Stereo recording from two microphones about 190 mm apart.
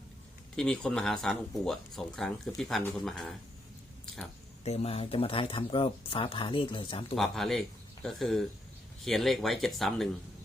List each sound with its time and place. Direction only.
0.5 s speech: 5° left (ahead or behind)
4.0 s a sound: centre (ahead or behind)
4.6 s speech: 35° left (ahead or behind)
7.2 s speech: centre (ahead or behind)